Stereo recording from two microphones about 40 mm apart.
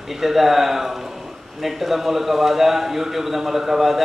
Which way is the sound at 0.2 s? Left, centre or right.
Centre.